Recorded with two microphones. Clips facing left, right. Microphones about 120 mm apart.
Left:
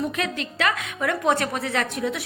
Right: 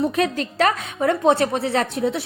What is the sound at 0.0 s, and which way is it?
A woman's voice, 35° right (ahead or behind).